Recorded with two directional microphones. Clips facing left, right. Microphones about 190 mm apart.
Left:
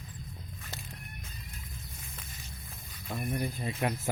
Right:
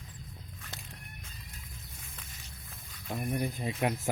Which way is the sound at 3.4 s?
15° right (ahead or behind).